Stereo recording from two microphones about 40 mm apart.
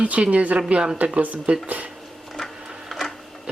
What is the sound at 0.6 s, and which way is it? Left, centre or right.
Speech, right.